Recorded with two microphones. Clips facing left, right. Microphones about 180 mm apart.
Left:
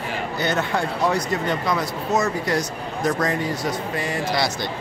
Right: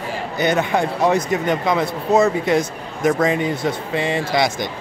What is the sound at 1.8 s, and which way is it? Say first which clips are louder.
Speech: right 6 dB; 60° right (ahead or behind).